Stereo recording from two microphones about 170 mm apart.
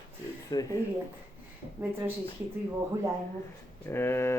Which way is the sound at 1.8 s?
15° right (ahead or behind).